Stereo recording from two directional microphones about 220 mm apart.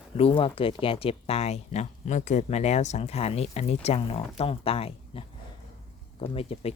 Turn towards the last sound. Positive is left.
turn(degrees=25)  # may be behind; listen again after turning